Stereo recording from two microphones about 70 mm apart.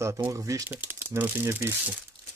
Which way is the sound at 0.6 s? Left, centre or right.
Right.